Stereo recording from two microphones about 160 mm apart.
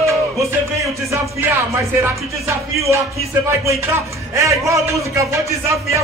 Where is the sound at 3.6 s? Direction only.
20° right (ahead or behind).